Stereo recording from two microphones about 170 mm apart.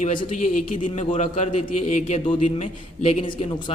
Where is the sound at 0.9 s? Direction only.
35° left (ahead or behind).